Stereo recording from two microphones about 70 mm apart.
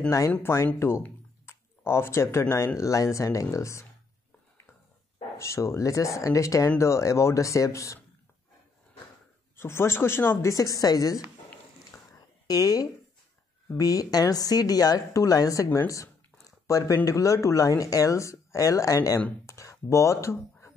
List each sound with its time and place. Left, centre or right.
0.4 s speech: left
1.4 s typing: left
2.5 s speech: left
5.4 s speech: left
9.6 s speech: left
10.4 s a woman's voice: left
12.1 s a sound: left
13.7 s a woman's voice: left